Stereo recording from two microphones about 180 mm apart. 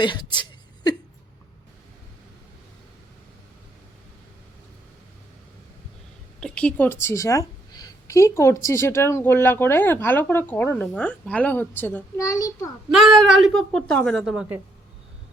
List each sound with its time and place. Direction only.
0.0 s speech: 25° left (ahead or behind)
6.4 s a woman's voice: 5° left (ahead or behind)
12.9 s a woman's voice: centre (ahead or behind)